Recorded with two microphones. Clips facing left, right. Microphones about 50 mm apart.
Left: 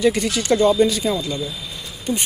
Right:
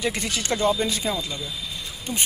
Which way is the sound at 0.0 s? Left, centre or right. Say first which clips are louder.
Left 8 dB; right.